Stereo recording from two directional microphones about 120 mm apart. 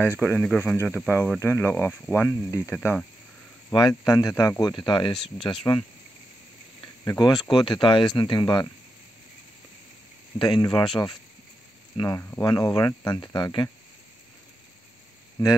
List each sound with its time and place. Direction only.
0.0 s speech: 20° left (ahead or behind)
3.7 s speech: 30° left (ahead or behind)
4.7 s speech: 45° left (ahead or behind)
5.7 s speech: 30° left (ahead or behind)
7.1 s speech: 35° left (ahead or behind)
10.4 s speech: 35° left (ahead or behind)
12.4 s speech: 30° left (ahead or behind)